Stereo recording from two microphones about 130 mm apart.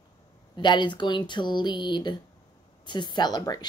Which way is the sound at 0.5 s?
35° left (ahead or behind).